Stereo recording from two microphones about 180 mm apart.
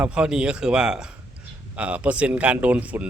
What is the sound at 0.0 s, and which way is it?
Speech, 5° right (ahead or behind).